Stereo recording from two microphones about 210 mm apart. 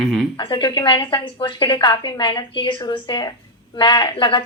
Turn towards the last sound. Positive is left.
turn(degrees=20)  # may be behind; listen again after turning